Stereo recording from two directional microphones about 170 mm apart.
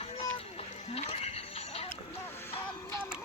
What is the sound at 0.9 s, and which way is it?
Music, 40° left (ahead or behind).